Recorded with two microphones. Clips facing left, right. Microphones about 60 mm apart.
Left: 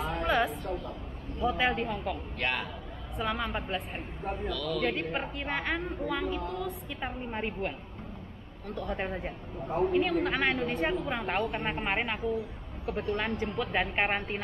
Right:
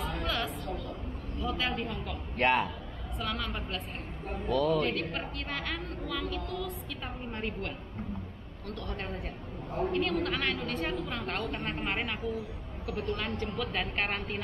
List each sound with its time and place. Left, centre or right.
0.1 s a sound: centre
1.4 s a woman's voice: left
2.3 s a man's voice: right
3.2 s a woman's voice: centre
4.5 s a man's voice: right
4.8 s a woman's voice: centre
13.5 s a woman's voice: left